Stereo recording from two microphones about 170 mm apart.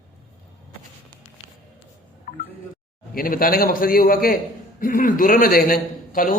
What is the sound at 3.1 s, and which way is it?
A man's voice, 55° left (ahead or behind).